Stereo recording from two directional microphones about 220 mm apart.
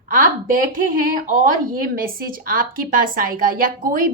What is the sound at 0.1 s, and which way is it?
A woman's voice, 40° right (ahead or behind).